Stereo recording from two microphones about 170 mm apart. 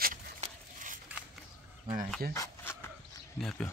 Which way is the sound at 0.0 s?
50° right (ahead or behind).